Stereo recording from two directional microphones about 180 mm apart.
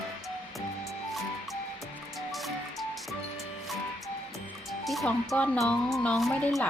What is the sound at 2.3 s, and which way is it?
Music, centre (ahead or behind).